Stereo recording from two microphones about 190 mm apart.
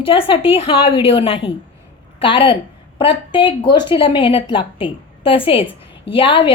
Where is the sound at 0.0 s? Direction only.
30° left (ahead or behind).